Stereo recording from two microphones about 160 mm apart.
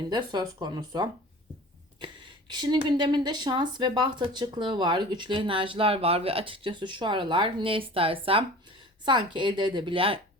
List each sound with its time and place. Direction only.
0.1 s speech: 25° right (ahead or behind)
2.5 s speech: 25° right (ahead or behind)